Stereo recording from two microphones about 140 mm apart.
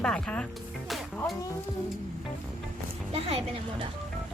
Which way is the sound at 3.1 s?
40° right (ahead or behind).